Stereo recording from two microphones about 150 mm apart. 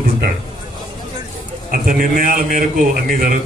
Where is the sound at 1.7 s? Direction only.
70° right (ahead or behind).